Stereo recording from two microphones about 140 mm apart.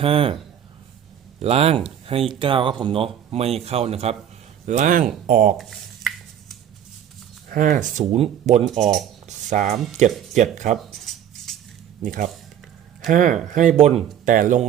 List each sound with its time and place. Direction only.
0.0 s speech: 40° right (ahead or behind)
1.4 s speech: 45° right (ahead or behind)
4.6 s speech: 65° right (ahead or behind)
5.5 s a sound: centre (ahead or behind)
7.5 s speech: 70° right (ahead or behind)
8.1 s speech: 50° right (ahead or behind)
8.6 s speech: centre (ahead or behind)
9.2 s a sound: 60° right (ahead or behind)
10.0 s speech: 60° right (ahead or behind)
11.0 s a sound: centre (ahead or behind)
12.0 s speech: 75° right (ahead or behind); by 14.0 s 55° right (ahead or behind)
14.3 s speech: 70° right (ahead or behind)